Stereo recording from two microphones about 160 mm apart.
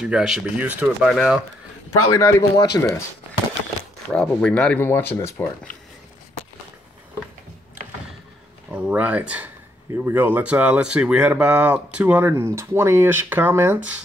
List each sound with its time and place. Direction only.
0.0 s speech: 5° right (ahead or behind)
2.0 s a man's voice: 20° left (ahead or behind)
4.1 s speech: 5° left (ahead or behind)
8.7 s speech: 10° right (ahead or behind)